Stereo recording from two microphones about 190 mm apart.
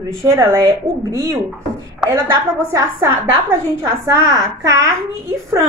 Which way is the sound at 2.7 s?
15° right (ahead or behind).